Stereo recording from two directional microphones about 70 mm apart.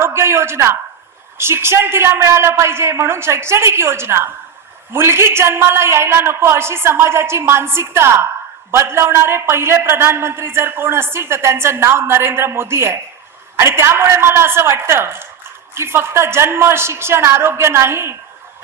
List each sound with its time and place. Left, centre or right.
0.0 s a man's voice: right